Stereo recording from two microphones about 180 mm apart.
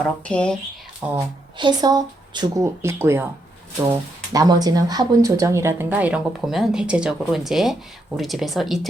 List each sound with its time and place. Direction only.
0.0 s speech: 5° left (ahead or behind)
1.0 s speech: 5° right (ahead or behind)
1.5 s speech: 25° right (ahead or behind); by 8.9 s centre (ahead or behind)